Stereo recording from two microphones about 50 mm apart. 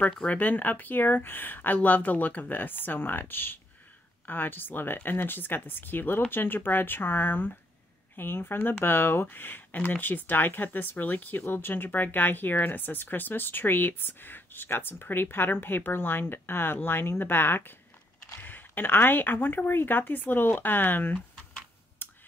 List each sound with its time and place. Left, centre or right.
0.2 s speech: left
22.0 s finger snapping: left